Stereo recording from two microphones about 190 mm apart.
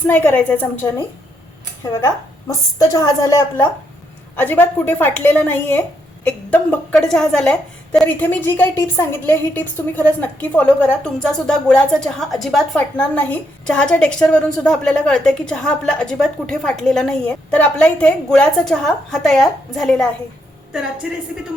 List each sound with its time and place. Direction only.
0.1 s a woman's voice: 10° left (ahead or behind)